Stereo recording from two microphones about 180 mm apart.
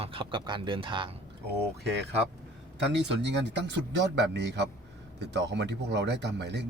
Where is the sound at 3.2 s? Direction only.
70° right (ahead or behind).